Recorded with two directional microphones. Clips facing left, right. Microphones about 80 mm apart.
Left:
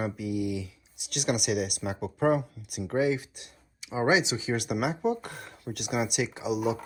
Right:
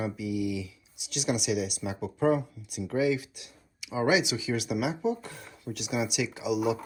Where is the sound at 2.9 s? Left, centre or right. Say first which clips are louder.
Even; left.